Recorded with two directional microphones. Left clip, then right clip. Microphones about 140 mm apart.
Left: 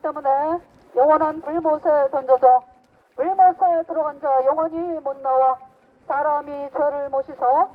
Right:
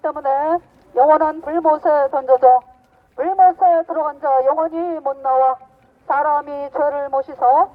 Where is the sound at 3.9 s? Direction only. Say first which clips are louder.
Right 2 dB; 40° right (ahead or behind).